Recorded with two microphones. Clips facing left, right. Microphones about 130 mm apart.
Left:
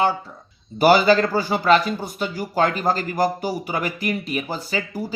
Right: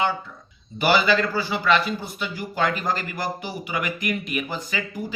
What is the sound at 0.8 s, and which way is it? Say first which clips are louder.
Speech: left 5 dB; 40° left (ahead or behind).